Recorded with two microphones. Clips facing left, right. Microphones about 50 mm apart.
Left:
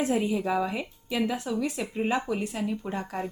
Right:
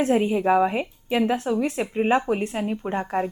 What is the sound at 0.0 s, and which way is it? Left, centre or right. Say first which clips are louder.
Speech: right 6 dB; right.